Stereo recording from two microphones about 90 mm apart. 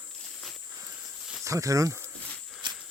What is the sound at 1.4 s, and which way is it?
Speech, 35° right (ahead or behind).